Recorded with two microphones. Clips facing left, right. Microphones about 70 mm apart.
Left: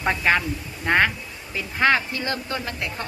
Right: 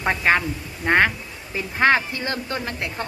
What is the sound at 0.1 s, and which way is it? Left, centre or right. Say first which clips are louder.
Speech: right 1 dB; right.